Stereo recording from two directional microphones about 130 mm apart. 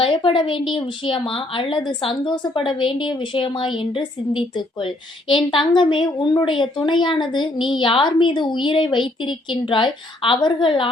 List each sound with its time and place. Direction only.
0.0 s a woman's voice: 40° left (ahead or behind)